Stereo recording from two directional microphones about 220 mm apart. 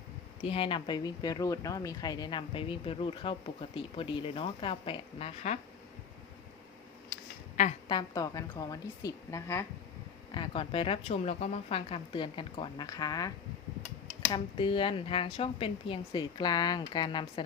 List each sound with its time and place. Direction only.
0.4 s speech: 25° left (ahead or behind)
7.5 s a sound: 35° left (ahead or behind)
7.9 s a woman's voice: 20° left (ahead or behind)